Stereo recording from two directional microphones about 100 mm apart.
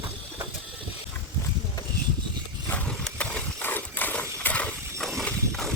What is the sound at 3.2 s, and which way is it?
Horse, 15° left (ahead or behind).